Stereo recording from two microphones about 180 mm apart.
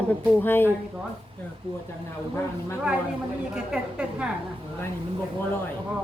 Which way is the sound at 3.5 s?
5° right (ahead or behind).